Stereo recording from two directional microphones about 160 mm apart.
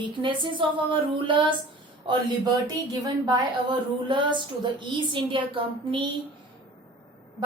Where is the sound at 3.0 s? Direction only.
25° right (ahead or behind).